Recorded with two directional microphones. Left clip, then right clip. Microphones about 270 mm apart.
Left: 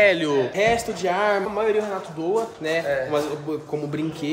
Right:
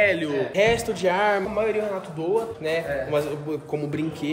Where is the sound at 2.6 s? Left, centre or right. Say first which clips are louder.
Left 2 dB; centre.